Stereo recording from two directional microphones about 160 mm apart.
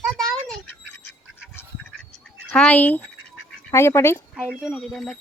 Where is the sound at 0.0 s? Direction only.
Centre (ahead or behind).